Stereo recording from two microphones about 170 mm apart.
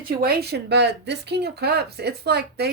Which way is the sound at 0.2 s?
65° right (ahead or behind).